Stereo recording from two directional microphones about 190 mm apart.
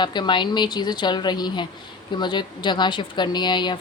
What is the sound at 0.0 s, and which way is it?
Speech, 25° left (ahead or behind).